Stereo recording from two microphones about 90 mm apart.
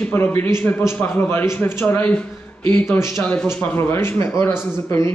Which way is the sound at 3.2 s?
15° left (ahead or behind).